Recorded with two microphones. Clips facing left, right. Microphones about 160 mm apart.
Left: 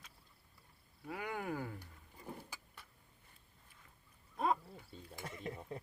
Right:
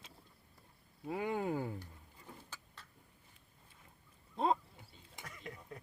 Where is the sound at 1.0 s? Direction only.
25° right (ahead or behind).